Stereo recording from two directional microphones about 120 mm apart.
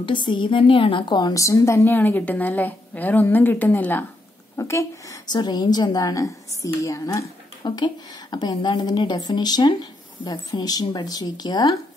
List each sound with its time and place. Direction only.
0.0 s a woman's voice: 40° left (ahead or behind); by 4.8 s 25° left (ahead or behind)
5.3 s a woman's voice: 35° left (ahead or behind)
7.6 s a woman's voice: 40° left (ahead or behind)